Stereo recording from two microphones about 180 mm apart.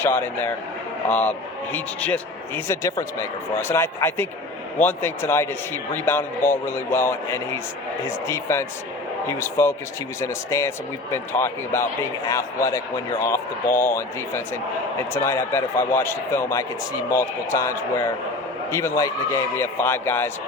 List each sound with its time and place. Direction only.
0.0 s a man's voice: 10° left (ahead or behind)